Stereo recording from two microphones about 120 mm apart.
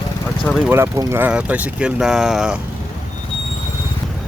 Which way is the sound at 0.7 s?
25° right (ahead or behind).